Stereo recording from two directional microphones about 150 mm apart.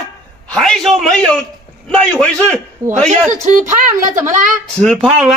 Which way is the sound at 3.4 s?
55° right (ahead or behind).